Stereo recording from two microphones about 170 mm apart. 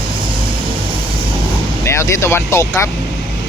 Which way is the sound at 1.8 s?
15° left (ahead or behind).